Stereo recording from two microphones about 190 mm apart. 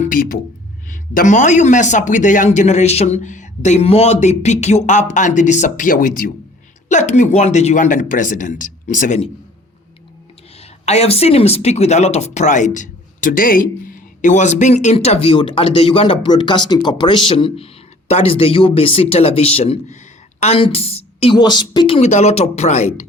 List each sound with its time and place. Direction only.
0.0 s music: 45° left (ahead or behind)
0.9 s speech: 40° left (ahead or behind)
10.6 s speech: 35° left (ahead or behind)